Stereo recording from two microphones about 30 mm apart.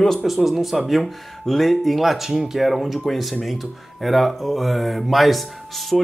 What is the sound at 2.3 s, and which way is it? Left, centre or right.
Speech, centre.